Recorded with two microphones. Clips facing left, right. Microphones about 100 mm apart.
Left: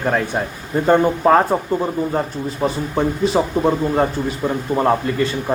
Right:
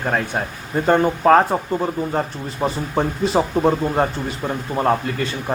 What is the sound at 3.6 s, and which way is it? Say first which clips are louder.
A man's voice: left 1 dB; centre (ahead or behind).